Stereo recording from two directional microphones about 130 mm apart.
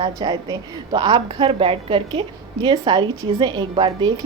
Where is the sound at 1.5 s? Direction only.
45° right (ahead or behind).